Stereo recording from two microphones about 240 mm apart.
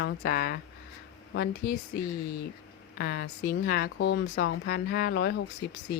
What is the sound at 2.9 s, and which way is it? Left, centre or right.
A woman's voice, left.